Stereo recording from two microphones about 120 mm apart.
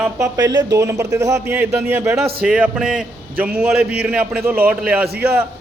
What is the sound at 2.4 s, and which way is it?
A man's voice, 10° right (ahead or behind).